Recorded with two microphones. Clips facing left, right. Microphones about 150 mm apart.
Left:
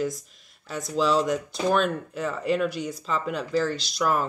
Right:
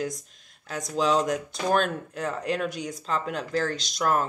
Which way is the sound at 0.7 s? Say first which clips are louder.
Left 1 dB; centre (ahead or behind).